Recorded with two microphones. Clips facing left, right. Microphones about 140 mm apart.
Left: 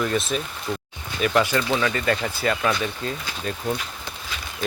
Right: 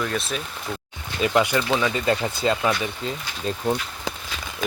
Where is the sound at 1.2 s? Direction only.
20° right (ahead or behind).